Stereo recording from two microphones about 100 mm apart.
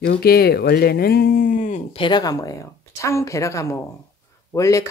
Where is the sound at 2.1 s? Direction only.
40° left (ahead or behind).